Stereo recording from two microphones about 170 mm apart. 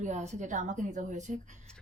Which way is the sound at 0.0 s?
40° right (ahead or behind).